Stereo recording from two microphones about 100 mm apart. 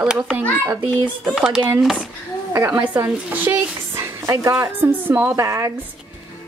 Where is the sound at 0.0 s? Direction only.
10° right (ahead or behind).